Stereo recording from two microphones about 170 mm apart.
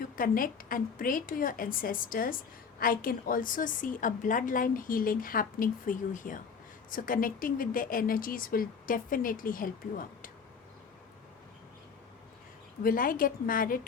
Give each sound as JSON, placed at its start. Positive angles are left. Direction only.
{"t": 0.0, "sound": "a woman's voice", "side_deg": 55}
{"t": 12.8, "sound": "speech", "side_deg": 55}